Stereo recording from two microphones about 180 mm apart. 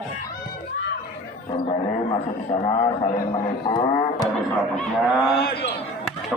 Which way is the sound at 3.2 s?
25° left (ahead or behind).